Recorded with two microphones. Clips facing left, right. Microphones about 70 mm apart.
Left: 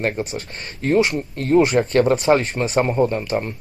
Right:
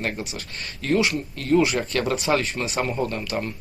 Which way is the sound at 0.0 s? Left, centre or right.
Left.